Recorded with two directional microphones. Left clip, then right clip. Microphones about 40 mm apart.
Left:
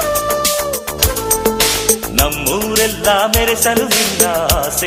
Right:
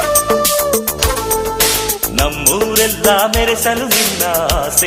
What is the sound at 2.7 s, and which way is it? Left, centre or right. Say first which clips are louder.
Music: left 1 dB; centre.